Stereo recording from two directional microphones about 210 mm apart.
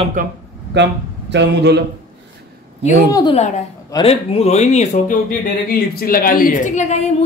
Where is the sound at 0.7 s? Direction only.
55° right (ahead or behind).